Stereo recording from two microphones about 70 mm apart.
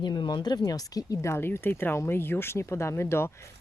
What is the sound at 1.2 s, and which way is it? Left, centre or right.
Speech, left.